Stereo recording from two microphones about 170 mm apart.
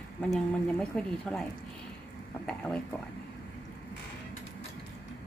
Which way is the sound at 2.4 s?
5° left (ahead or behind).